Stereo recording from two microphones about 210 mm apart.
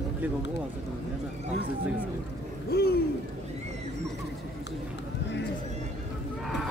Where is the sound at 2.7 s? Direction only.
50° left (ahead or behind).